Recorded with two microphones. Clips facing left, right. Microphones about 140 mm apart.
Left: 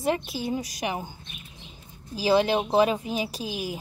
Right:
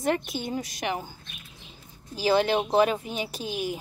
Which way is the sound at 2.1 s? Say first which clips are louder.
Left 1 dB; 30° left (ahead or behind).